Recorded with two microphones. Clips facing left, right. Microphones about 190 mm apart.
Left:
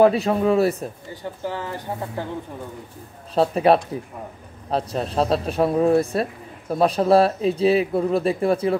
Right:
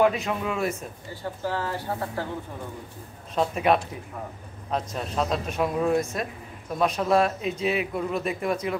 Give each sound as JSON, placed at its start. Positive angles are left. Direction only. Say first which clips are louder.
{"t": 0.0, "sound": "speech", "louder": "left 7 dB", "side_deg": 35}
{"t": 1.1, "sound": "speech", "louder": "right 2 dB", "side_deg": 15}
{"t": 3.3, "sound": "speech", "louder": "left 6 dB", "side_deg": 35}